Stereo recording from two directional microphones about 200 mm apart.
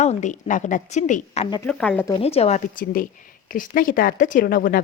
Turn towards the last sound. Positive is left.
turn(degrees=45)  # may be behind; listen again after turning